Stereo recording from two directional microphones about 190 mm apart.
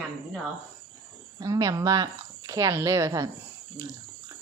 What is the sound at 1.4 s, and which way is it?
A woman's voice, 20° right (ahead or behind).